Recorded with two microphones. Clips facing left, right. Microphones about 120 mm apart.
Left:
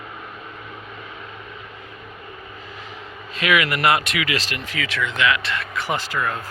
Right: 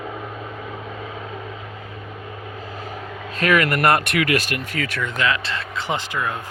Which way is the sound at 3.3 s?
45° right (ahead or behind).